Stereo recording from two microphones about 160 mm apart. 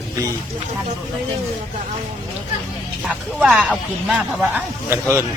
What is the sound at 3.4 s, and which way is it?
Speech, 5° right (ahead or behind).